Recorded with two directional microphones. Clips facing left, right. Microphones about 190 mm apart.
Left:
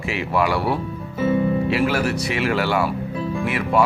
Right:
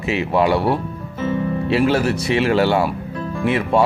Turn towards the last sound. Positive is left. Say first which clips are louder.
# right 3 dB
turn(degrees=-25)  # may be behind; listen again after turning